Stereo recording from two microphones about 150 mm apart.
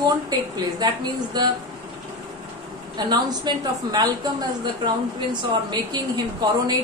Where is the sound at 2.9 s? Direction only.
30° right (ahead or behind).